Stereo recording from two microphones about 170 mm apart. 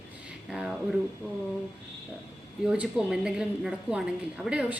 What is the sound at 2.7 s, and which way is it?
A woman's voice, 5° right (ahead or behind).